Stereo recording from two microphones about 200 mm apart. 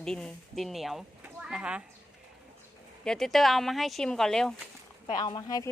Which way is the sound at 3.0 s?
Centre (ahead or behind).